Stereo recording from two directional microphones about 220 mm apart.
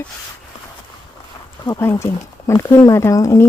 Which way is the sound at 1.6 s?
15° left (ahead or behind).